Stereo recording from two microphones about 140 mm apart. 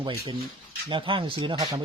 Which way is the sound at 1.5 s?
25° right (ahead or behind).